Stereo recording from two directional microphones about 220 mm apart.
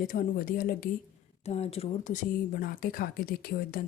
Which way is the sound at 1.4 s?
30° left (ahead or behind).